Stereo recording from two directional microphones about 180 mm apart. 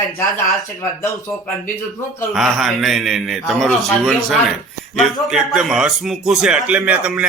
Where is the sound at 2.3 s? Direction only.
Centre (ahead or behind).